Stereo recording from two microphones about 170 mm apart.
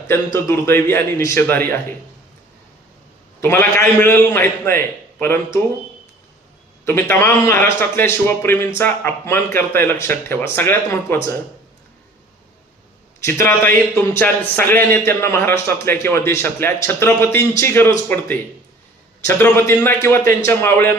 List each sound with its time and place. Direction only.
0.3 s a man's voice: 15° left (ahead or behind)
3.4 s a man's voice: 15° left (ahead or behind)
6.8 s a man's voice: 10° left (ahead or behind)
13.2 s a man's voice: 15° left (ahead or behind)
19.2 s a man's voice: 10° left (ahead or behind)